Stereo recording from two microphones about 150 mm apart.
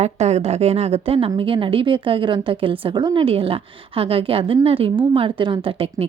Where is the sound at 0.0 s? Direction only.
45° right (ahead or behind).